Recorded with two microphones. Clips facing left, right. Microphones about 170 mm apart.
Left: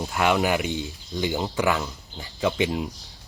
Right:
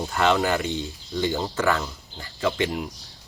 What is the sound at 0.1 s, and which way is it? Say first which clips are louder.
Speech: even; 10° left (ahead or behind).